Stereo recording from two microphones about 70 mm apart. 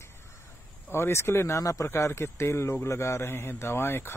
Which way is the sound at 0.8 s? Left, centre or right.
Left.